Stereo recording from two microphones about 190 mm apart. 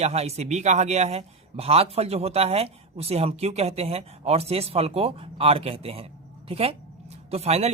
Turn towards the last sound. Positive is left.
turn(degrees=-35)  # may be behind; listen again after turning